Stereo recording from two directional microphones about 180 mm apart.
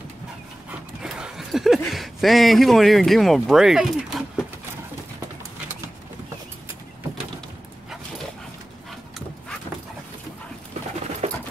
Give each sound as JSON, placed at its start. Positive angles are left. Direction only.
{"t": 0.7, "sound": "dog", "side_deg": -5}
{"t": 1.9, "sound": "speech", "side_deg": 0}
{"t": 11.2, "sound": "a sound", "side_deg": -35}